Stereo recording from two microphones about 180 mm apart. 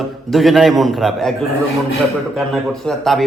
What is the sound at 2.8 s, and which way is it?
Speech, centre (ahead or behind).